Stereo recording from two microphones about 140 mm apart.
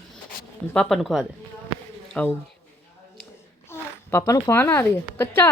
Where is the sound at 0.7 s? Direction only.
5° left (ahead or behind).